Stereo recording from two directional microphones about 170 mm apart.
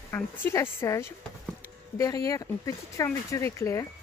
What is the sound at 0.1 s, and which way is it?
Speech, 15° left (ahead or behind).